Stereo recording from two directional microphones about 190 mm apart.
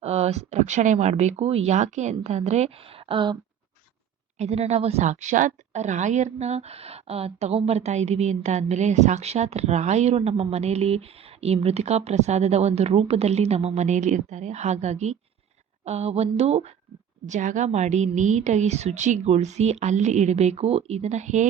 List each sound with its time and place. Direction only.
0.0 s speech: 35° right (ahead or behind)
4.4 s a woman's voice: 35° right (ahead or behind)